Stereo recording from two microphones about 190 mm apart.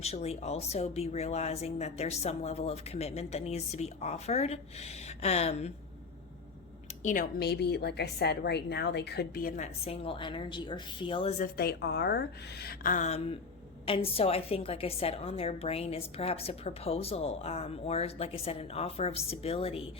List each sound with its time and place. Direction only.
0.0 s a woman's voice: 35° left (ahead or behind)
7.0 s a woman's voice: 45° left (ahead or behind)
9.8 s a woman's voice: 30° left (ahead or behind)
11.3 s a woman's voice: 50° left (ahead or behind); by 19.9 s 30° left (ahead or behind)